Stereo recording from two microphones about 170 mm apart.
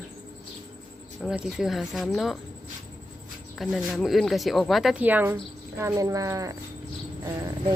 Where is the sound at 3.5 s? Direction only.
Centre (ahead or behind).